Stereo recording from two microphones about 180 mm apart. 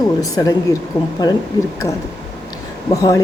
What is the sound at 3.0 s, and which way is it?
Speech, 20° left (ahead or behind).